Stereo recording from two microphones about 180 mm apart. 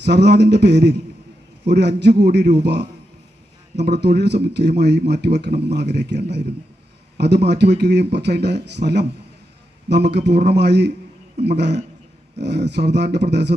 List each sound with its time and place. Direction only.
0.0 s speech: 70° right (ahead or behind)